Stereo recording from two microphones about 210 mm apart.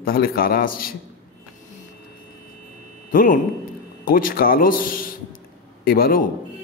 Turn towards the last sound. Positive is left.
turn(degrees=45)  # may be behind; listen again after turning